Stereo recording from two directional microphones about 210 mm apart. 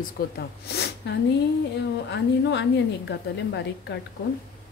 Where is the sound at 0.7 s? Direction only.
50° left (ahead or behind).